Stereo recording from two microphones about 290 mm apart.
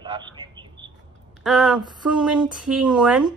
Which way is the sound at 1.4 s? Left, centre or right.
Centre.